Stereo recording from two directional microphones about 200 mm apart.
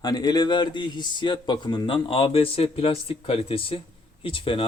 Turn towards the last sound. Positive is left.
turn(degrees=25)  # may be behind; listen again after turning